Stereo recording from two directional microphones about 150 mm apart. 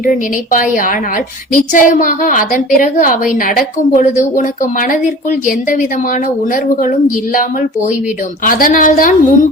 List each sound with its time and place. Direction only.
0.5 s a woman's voice: 65° left (ahead or behind)
6.8 s a woman's voice: 65° left (ahead or behind)
8.4 s a woman's voice: 70° left (ahead or behind)